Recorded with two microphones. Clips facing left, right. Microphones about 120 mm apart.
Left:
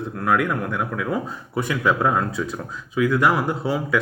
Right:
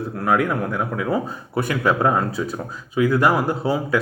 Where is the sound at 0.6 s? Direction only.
40° right (ahead or behind).